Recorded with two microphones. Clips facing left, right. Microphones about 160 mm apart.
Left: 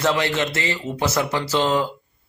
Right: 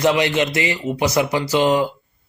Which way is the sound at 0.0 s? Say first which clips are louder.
Right 4 dB; 15° right (ahead or behind).